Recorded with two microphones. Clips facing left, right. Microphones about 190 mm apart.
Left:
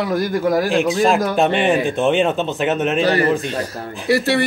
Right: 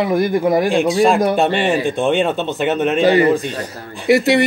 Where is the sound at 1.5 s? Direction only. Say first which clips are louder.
Even; centre (ahead or behind).